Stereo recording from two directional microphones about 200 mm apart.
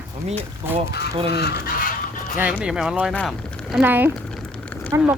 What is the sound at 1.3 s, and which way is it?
Speech, 55° left (ahead or behind).